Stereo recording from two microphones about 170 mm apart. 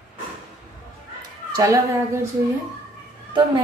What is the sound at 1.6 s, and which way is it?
Speech, 20° right (ahead or behind).